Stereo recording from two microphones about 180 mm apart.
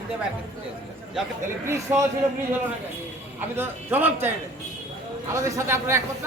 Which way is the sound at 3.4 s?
10° right (ahead or behind).